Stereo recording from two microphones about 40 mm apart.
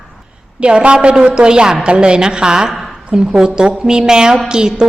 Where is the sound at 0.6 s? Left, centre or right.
Right.